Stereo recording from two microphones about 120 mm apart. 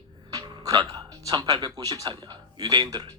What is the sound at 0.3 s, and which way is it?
Speech, 35° right (ahead or behind).